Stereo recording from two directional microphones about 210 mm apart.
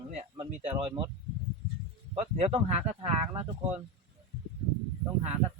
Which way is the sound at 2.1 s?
30° right (ahead or behind).